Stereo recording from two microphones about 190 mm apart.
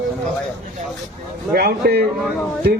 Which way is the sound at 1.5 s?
55° right (ahead or behind).